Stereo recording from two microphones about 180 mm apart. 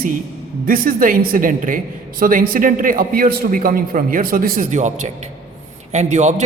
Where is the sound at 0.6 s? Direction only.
55° right (ahead or behind).